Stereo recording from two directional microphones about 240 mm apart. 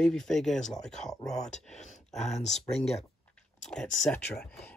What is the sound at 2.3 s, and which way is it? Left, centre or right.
Speech, left.